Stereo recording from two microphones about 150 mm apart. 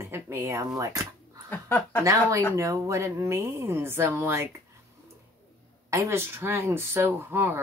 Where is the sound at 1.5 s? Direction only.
10° left (ahead or behind).